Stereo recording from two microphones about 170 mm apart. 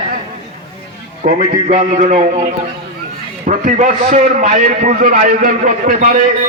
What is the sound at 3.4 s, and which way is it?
A man's voice, 50° right (ahead or behind).